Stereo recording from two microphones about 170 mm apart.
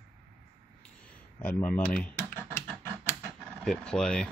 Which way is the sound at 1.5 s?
10° left (ahead or behind).